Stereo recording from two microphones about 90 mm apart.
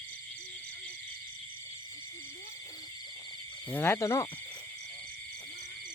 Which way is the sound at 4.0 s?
35° left (ahead or behind).